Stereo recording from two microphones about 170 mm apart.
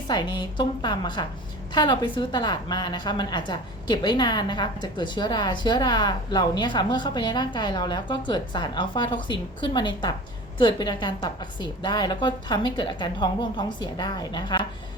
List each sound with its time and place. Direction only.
0.1 s a woman's voice: 25° left (ahead or behind)